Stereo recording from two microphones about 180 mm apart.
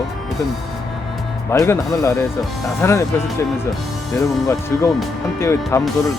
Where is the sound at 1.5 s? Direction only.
15° left (ahead or behind).